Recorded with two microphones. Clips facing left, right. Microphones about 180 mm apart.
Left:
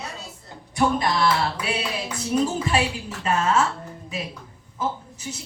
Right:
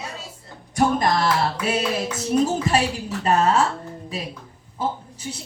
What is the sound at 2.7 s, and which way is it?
Speech, 40° right (ahead or behind).